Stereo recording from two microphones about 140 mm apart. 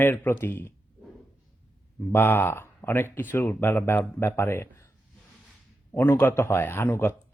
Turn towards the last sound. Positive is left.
turn(degrees=15)  # may be behind; listen again after turning